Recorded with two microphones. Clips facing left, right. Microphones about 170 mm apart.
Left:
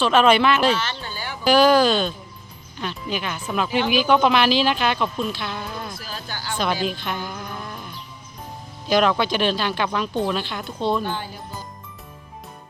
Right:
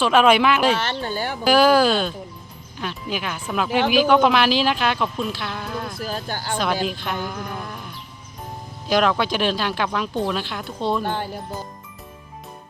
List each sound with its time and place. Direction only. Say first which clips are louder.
0.0 s speech: right 1 dB; 10° right (ahead or behind)
0.7 s speech: right 2 dB; 55° right (ahead or behind)
1.5 s speech: even; 5° right (ahead or behind)
3.8 s speech: right 3 dB; 50° right (ahead or behind)
4.0 s speech: left 1 dB; centre (ahead or behind)
5.9 s speech: right 6 dB; 50° right (ahead or behind)
6.8 s speech: right 1 dB; centre (ahead or behind)
11.0 s speech: right 2 dB; 60° right (ahead or behind)